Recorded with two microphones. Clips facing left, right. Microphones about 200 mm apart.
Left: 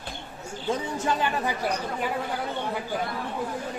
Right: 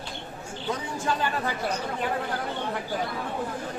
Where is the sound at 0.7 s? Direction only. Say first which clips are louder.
Left 2 dB; 20° left (ahead or behind).